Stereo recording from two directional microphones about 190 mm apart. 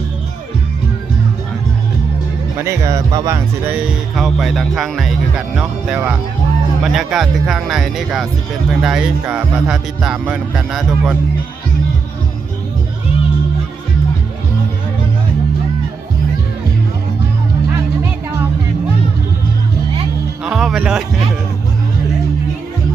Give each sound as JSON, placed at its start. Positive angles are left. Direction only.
{"t": 2.6, "sound": "speech", "side_deg": -15}
{"t": 20.4, "sound": "music", "side_deg": -5}